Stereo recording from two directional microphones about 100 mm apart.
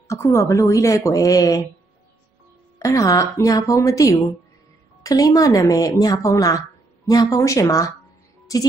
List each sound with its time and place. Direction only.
0.1 s speech: 30° left (ahead or behind)
2.8 s speech: 35° left (ahead or behind)